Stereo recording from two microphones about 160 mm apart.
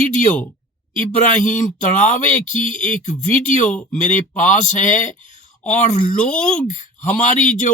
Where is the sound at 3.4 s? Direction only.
50° left (ahead or behind).